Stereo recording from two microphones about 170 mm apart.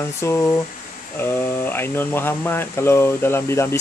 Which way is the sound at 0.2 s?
15° left (ahead or behind).